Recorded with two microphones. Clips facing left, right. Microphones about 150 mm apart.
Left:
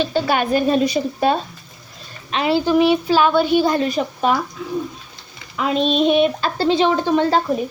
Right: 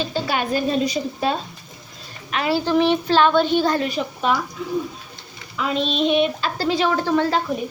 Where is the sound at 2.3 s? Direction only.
20° left (ahead or behind).